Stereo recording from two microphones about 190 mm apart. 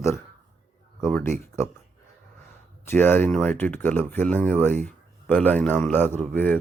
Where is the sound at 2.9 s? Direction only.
10° left (ahead or behind).